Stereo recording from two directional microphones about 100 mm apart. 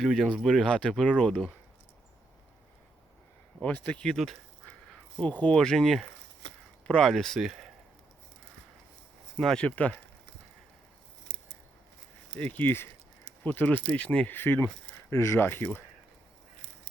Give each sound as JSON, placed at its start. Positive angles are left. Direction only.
{"t": 0.0, "sound": "speech", "side_deg": 5}
{"t": 3.6, "sound": "speech", "side_deg": 15}
{"t": 9.4, "sound": "speech", "side_deg": 5}
{"t": 12.4, "sound": "speech", "side_deg": 15}